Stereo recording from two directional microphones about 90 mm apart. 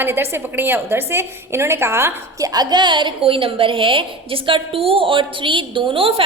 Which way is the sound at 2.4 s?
45° right (ahead or behind).